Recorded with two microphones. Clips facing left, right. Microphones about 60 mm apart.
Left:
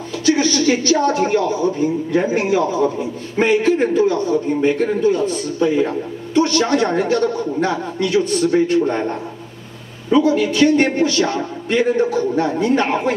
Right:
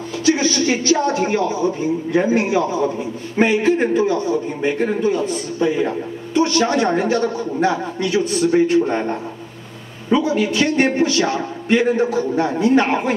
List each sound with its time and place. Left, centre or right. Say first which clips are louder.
0.4 s a man's voice: left 2 dB; right